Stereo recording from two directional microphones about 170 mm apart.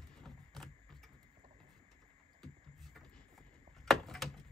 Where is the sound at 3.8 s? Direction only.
Centre (ahead or behind).